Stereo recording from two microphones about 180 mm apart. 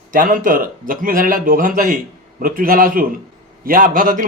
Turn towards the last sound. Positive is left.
turn(degrees=-50)  # may be behind; listen again after turning